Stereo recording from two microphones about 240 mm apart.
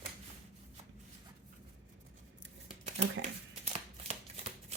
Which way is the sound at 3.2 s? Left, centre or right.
Right.